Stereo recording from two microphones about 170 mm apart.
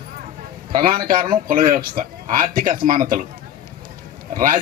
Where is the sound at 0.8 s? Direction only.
55° right (ahead or behind).